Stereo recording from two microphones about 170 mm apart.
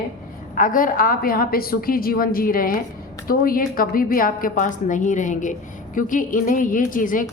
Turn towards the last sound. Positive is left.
turn(degrees=50)  # may be behind; listen again after turning